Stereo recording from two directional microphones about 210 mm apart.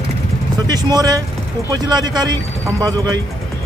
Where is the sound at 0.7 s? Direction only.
20° right (ahead or behind).